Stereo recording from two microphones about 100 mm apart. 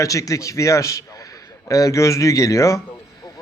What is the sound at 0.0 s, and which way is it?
Speech, 35° left (ahead or behind).